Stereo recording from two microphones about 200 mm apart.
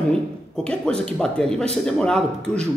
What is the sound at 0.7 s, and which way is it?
A man's voice, 5° left (ahead or behind).